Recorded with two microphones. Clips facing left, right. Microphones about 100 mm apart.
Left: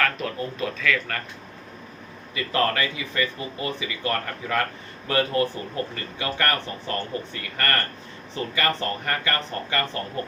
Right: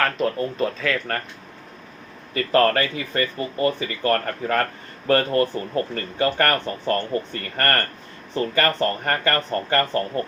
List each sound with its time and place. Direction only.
0.0 s speech: 40° right (ahead or behind)
2.3 s speech: 45° right (ahead or behind)